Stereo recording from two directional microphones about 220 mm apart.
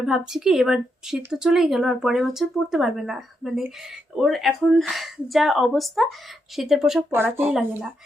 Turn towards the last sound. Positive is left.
turn(degrees=-5)  # may be behind; listen again after turning